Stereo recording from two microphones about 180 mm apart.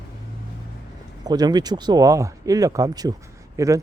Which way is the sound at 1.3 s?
20° right (ahead or behind).